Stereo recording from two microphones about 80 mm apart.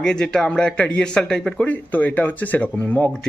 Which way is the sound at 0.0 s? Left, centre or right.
Centre.